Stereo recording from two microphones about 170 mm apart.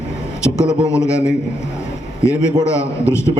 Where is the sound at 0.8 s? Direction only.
15° left (ahead or behind).